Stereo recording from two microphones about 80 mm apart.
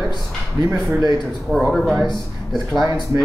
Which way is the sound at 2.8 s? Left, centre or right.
Right.